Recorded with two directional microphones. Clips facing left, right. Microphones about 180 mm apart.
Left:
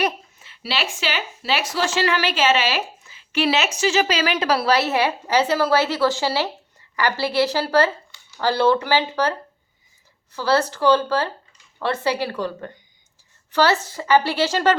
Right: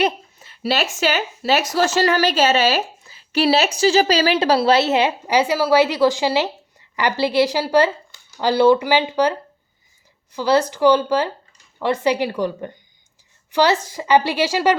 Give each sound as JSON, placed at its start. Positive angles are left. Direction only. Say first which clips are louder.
{"t": 0.0, "sound": "a woman's voice", "louder": "right 3 dB", "side_deg": -40}
{"t": 10.3, "sound": "a woman's voice", "louder": "right 3 dB", "side_deg": -15}